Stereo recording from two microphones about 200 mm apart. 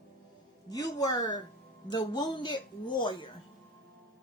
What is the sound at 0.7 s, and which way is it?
A woman's voice, 20° left (ahead or behind).